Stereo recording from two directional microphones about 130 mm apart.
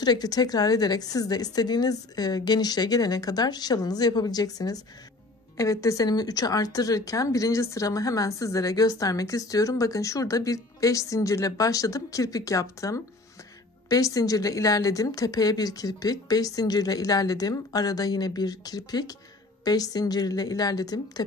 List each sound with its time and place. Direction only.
0.0 s a woman's voice: 30° left (ahead or behind)